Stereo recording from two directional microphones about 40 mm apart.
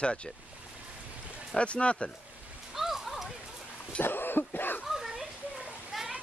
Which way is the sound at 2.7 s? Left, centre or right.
Centre.